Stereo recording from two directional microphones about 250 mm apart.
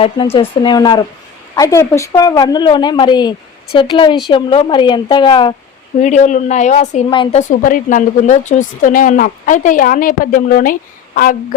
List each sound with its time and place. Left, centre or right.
0.0 s a woman's voice: left
6.0 s a woman's voice: left